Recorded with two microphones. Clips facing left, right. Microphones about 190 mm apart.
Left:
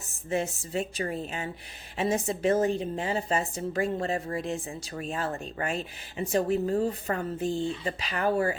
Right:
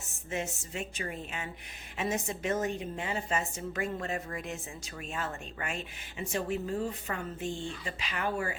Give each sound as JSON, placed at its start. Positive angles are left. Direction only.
{"t": 0.3, "sound": "a woman's voice", "side_deg": 35}